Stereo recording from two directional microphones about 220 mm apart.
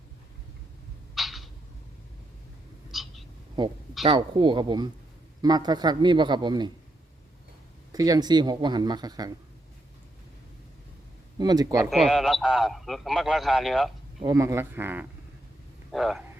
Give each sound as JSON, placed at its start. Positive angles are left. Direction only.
{"t": 1.1, "sound": "a sound", "side_deg": 0}
{"t": 2.9, "sound": "a sound", "side_deg": 0}
{"t": 3.6, "sound": "speech", "side_deg": -20}
{"t": 7.9, "sound": "speech", "side_deg": -15}
{"t": 11.3, "sound": "speech", "side_deg": -15}
{"t": 11.9, "sound": "a man's voice", "side_deg": 0}
{"t": 14.2, "sound": "a man's voice", "side_deg": -15}